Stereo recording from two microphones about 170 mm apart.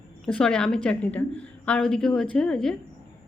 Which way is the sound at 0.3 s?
5° left (ahead or behind).